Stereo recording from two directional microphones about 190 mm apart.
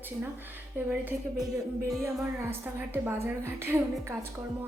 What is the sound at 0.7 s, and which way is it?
Speech, 5° right (ahead or behind).